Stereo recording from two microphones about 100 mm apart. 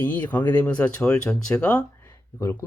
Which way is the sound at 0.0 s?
20° left (ahead or behind).